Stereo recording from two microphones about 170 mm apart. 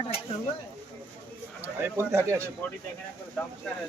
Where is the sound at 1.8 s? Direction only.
15° right (ahead or behind).